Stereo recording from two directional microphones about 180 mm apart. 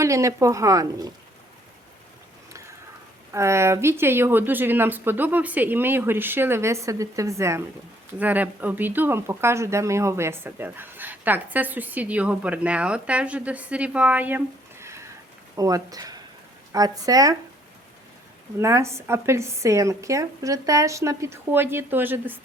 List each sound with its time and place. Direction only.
0.0 s speech: 15° right (ahead or behind)
3.3 s speech: 15° right (ahead or behind)
18.6 s speech: 15° right (ahead or behind)